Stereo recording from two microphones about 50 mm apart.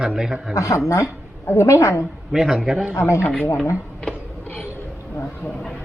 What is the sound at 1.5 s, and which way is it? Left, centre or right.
Speech, left.